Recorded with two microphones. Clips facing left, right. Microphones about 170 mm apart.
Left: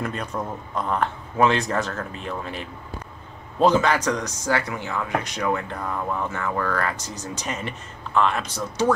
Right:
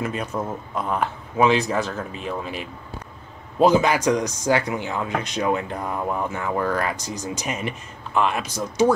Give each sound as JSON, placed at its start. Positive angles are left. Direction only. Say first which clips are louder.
{"t": 0.0, "sound": "a man's voice", "louder": "right 2 dB", "side_deg": -5}